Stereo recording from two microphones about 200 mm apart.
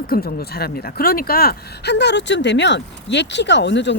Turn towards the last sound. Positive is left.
turn(degrees=60)  # may be behind; listen again after turning